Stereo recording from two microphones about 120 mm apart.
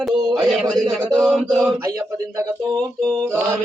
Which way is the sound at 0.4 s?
Centre (ahead or behind).